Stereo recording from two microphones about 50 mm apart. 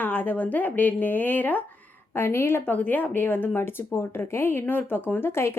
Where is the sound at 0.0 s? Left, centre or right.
Left.